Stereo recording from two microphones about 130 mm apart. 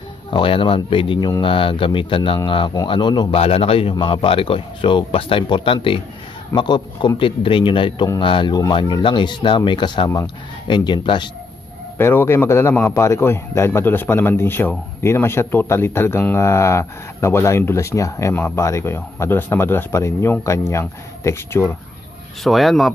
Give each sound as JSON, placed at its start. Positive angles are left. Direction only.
{"t": 0.3, "sound": "speech", "side_deg": 40}
{"t": 3.3, "sound": "speech", "side_deg": 50}
{"t": 12.0, "sound": "a man's voice", "side_deg": 20}
{"t": 22.4, "sound": "a man's voice", "side_deg": 0}